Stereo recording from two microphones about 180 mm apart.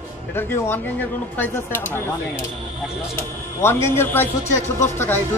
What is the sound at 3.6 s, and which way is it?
Speech, 15° left (ahead or behind).